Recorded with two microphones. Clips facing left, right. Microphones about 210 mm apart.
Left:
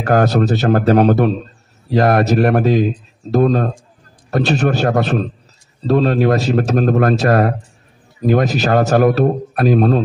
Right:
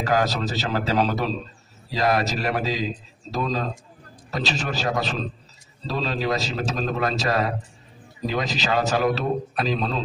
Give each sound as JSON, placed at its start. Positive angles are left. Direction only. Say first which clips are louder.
{"t": 0.0, "sound": "speech", "louder": "left 9 dB", "side_deg": 55}